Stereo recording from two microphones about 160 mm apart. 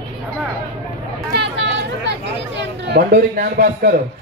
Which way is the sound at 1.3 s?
90° right.